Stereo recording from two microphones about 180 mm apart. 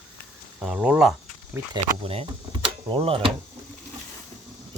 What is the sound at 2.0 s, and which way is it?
Speech, 30° right (ahead or behind).